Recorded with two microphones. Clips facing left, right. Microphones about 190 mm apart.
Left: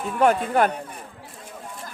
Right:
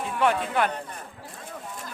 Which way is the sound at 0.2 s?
45° left (ahead or behind).